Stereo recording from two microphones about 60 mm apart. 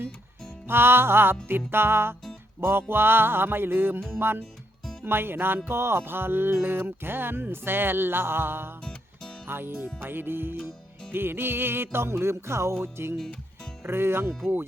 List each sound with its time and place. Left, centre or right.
0.7 s music: right
8.8 s music: centre
9.5 s music: right
13.8 s speech: right